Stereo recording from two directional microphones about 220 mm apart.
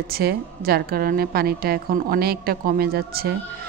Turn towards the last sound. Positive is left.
turn(degrees=-45)  # may be behind; listen again after turning